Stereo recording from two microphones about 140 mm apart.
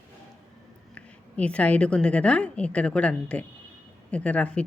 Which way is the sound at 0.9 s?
10° left (ahead or behind).